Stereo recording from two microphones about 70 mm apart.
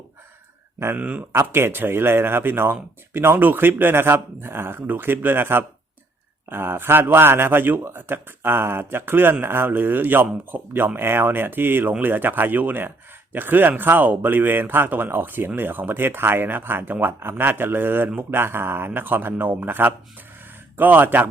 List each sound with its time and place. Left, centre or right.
0.9 s speech: centre
1.3 s speech: right